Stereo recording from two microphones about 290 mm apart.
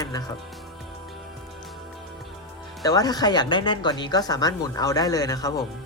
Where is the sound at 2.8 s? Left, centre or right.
Centre.